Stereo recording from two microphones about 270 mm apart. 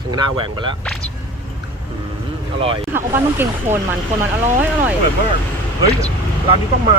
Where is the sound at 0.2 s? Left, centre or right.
Centre.